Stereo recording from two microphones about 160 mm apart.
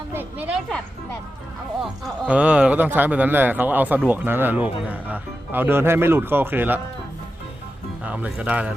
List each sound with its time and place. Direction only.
0.1 s a woman's voice: 10° right (ahead or behind)
1.8 s speech: 5° right (ahead or behind)
8.0 s speech: 10° right (ahead or behind)